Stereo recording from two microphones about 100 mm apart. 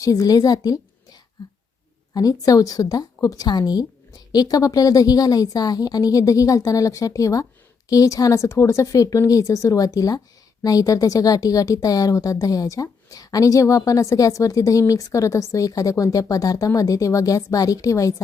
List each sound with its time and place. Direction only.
0.0 s a woman's voice: 35° left (ahead or behind)